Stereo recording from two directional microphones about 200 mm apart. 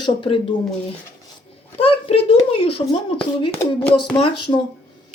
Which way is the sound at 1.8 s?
30° left (ahead or behind).